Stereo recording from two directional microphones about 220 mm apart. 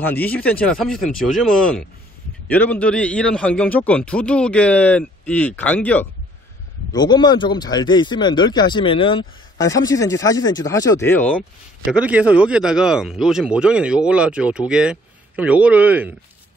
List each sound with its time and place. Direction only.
0.0 s speech: 10° left (ahead or behind)
6.9 s speech: 20° left (ahead or behind)
11.9 s speech: 5° right (ahead or behind)